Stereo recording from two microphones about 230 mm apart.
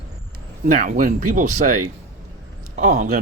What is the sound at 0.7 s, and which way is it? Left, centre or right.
Speech, right.